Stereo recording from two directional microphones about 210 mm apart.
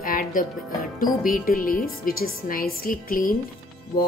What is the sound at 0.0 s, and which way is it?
Music, 40° left (ahead or behind).